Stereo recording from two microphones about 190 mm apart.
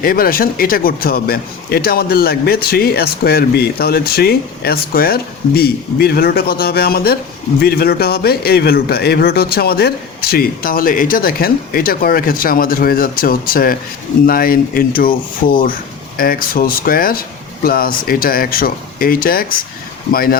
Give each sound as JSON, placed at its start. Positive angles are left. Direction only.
{"t": 0.0, "sound": "a man's voice", "side_deg": 50}